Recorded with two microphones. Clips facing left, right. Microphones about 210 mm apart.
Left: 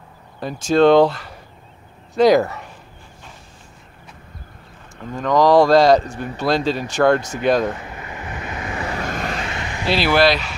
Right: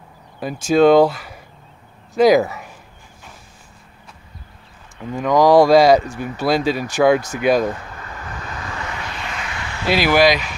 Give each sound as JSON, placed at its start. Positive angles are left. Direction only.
{"t": 0.7, "sound": "speech", "side_deg": -10}
{"t": 5.1, "sound": "speech", "side_deg": -10}
{"t": 7.8, "sound": "vehicle", "side_deg": 15}
{"t": 8.9, "sound": "vehicle", "side_deg": 45}
{"t": 9.5, "sound": "vehicle", "side_deg": 20}
{"t": 9.8, "sound": "speech", "side_deg": -10}